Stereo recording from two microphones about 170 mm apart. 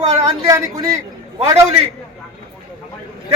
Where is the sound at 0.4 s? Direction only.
20° right (ahead or behind).